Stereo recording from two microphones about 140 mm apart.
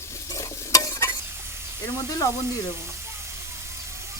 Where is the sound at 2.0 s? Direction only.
25° left (ahead or behind).